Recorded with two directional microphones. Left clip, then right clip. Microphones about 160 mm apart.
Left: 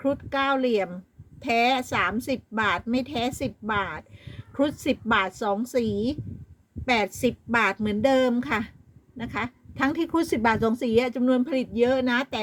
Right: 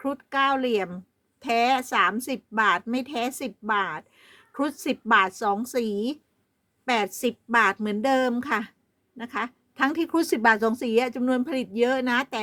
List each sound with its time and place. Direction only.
0.0 s a woman's voice: 30° right (ahead or behind)